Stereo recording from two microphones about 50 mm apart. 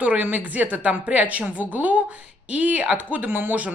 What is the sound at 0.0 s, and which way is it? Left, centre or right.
Speech, right.